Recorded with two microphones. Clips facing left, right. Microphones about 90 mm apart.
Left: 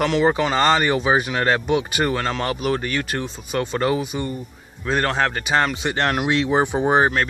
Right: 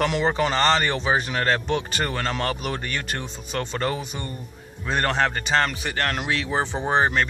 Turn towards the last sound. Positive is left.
turn(degrees=15)  # may be behind; listen again after turning